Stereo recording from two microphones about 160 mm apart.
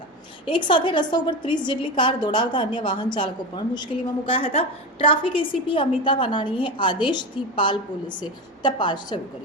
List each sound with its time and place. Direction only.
0.4 s a woman's voice: 30° left (ahead or behind)